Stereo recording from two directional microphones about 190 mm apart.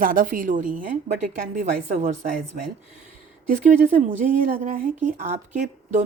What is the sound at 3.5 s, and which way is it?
Speech, 40° right (ahead or behind).